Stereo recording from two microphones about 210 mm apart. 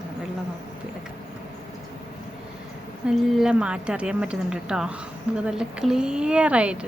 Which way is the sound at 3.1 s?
5° right (ahead or behind).